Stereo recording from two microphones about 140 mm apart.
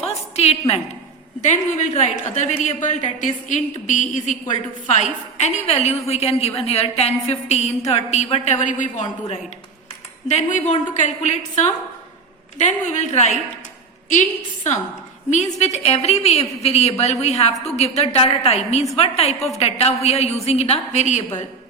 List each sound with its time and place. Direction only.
0.3 s a woman's voice: 50° left (ahead or behind)
1.4 s a woman's voice: 60° left (ahead or behind)